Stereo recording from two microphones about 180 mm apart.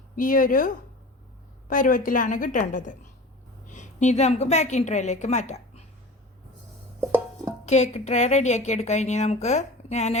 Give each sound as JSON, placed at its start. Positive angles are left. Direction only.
{"t": 0.2, "sound": "a woman's voice", "side_deg": 50}
{"t": 7.6, "sound": "a woman's voice", "side_deg": 40}